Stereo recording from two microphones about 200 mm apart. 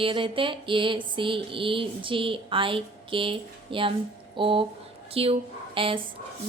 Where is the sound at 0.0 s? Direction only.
25° right (ahead or behind).